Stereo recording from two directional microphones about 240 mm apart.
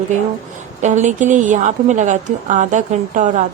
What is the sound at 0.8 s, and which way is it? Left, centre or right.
A woman's voice, right.